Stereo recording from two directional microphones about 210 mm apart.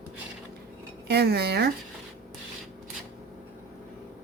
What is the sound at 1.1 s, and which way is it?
Speech, 50° right (ahead or behind).